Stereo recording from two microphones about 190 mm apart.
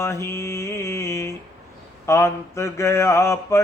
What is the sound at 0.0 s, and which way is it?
Mantra, 15° left (ahead or behind).